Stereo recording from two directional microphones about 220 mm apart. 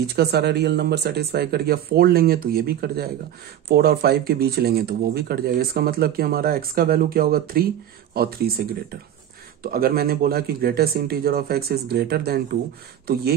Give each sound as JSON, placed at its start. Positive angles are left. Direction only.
{"t": 0.0, "sound": "speech", "side_deg": -45}